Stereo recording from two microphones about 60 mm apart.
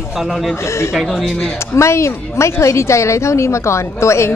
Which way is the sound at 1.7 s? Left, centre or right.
Left.